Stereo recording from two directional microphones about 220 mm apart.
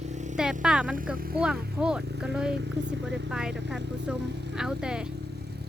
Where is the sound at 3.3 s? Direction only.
5° right (ahead or behind).